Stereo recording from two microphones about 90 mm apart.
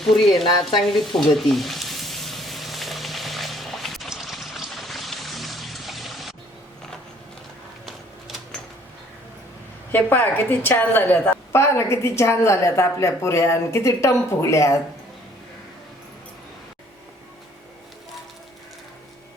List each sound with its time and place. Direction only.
0.0 s speech: centre (ahead or behind)
0.9 s sizzle: centre (ahead or behind)
7.9 s a sound: centre (ahead or behind)
9.9 s a woman's voice: 25° left (ahead or behind)